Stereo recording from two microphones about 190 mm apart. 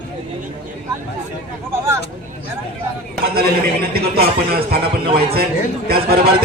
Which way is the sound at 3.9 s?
55° right (ahead or behind).